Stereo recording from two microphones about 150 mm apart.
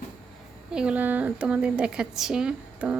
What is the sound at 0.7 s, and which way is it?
A woman's voice, 5° right (ahead or behind).